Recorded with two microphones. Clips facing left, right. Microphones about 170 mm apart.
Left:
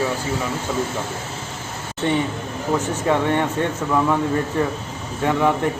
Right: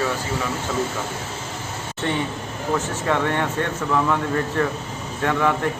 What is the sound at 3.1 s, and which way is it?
Speech, 15° left (ahead or behind).